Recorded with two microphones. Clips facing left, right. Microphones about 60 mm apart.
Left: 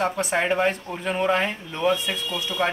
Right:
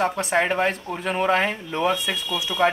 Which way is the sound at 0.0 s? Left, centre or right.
Centre.